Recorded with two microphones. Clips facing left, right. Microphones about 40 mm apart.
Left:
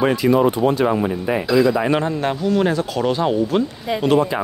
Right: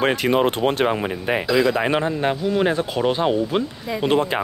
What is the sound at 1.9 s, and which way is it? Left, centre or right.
Speech, centre.